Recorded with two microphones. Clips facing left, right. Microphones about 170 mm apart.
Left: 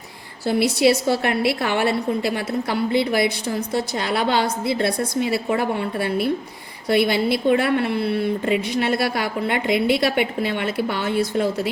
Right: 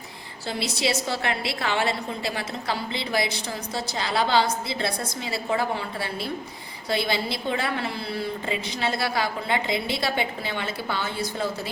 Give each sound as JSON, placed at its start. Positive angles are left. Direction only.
{"t": 0.4, "sound": "a woman's voice", "side_deg": 60}